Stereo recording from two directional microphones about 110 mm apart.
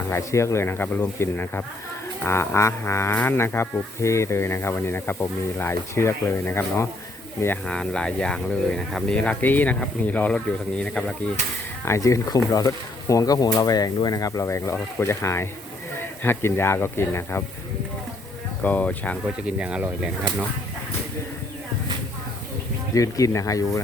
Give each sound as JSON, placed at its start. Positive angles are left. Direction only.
{"t": 0.1, "sound": "speech", "side_deg": 25}
{"t": 7.7, "sound": "speech", "side_deg": 10}
{"t": 11.9, "sound": "speech", "side_deg": 30}
{"t": 18.6, "sound": "speech", "side_deg": 15}
{"t": 19.5, "sound": "speech", "side_deg": -10}
{"t": 23.0, "sound": "speech", "side_deg": 30}